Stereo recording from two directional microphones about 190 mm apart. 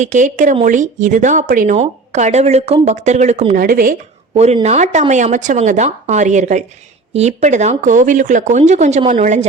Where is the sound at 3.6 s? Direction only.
45° right (ahead or behind).